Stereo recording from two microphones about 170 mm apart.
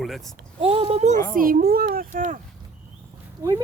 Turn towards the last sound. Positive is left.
turn(degrees=-20)  # may be behind; listen again after turning